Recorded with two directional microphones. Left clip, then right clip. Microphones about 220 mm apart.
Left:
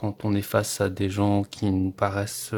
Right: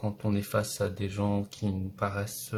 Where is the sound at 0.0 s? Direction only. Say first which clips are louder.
Left 5 dB; 40° left (ahead or behind).